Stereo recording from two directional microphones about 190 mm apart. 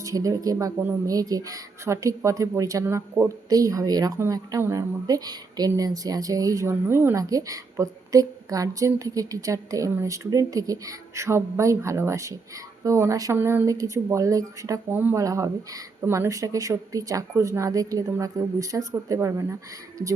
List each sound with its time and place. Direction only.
0.0 s speech: 15° right (ahead or behind)